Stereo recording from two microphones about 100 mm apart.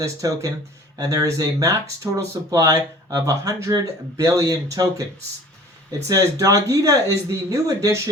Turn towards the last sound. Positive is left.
turn(degrees=-35)  # may be behind; listen again after turning